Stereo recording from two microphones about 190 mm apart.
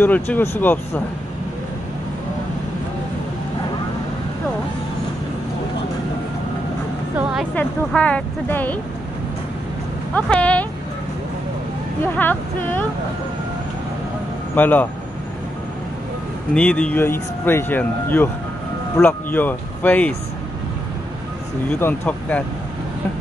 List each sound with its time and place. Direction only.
0.0 s speech: 10° left (ahead or behind)
7.5 s speech: 5° left (ahead or behind)
10.1 s speech: 5° left (ahead or behind)
12.0 s speech: 10° left (ahead or behind)
14.5 s speech: 10° left (ahead or behind)
16.5 s speech: 5° left (ahead or behind)
21.7 s speech: 10° left (ahead or behind)